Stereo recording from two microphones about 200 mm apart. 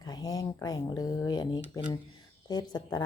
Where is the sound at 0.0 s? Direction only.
20° left (ahead or behind).